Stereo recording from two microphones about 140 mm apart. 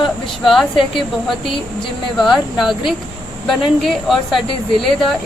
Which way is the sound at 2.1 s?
Centre (ahead or behind).